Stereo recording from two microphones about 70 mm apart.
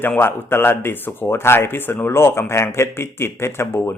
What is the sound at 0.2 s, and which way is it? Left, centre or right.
Speech, left.